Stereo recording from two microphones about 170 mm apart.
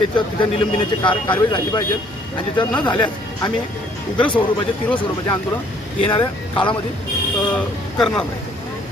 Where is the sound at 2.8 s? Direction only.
5° left (ahead or behind).